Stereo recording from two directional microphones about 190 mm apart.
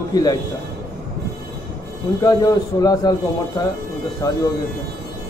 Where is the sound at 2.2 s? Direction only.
20° left (ahead or behind).